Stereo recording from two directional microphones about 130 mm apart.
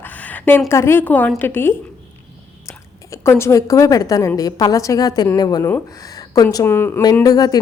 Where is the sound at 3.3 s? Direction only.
20° left (ahead or behind).